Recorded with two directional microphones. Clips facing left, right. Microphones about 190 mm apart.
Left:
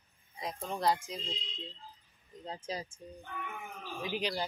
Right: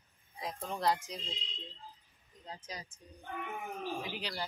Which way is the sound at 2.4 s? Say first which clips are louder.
Left 7 dB; 30° left (ahead or behind).